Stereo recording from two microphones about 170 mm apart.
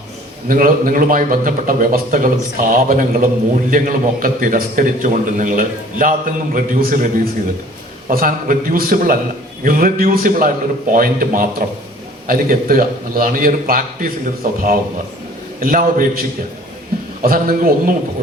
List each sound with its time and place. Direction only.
0.4 s a man's voice: 55° right (ahead or behind)
15.6 s a man's voice: 55° right (ahead or behind)
17.2 s a man's voice: 55° right (ahead or behind)